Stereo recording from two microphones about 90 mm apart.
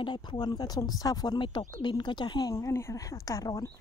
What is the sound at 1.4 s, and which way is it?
Speech, 55° left (ahead or behind).